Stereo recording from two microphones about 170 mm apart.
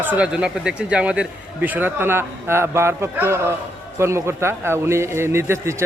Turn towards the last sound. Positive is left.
turn(degrees=-15)  # may be behind; listen again after turning